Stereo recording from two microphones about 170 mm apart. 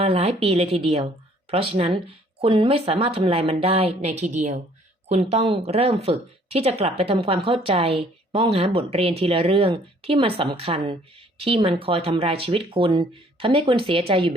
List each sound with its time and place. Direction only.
0.0 s speech: 35° right (ahead or behind)